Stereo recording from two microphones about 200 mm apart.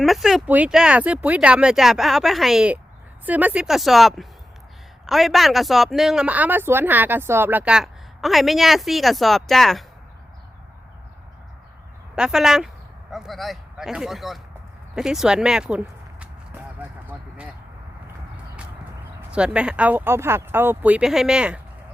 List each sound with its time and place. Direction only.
0.0 s speech: centre (ahead or behind)
12.1 s speech: 5° right (ahead or behind)
16.2 s a sound: 5° right (ahead or behind)
19.3 s speech: 5° right (ahead or behind)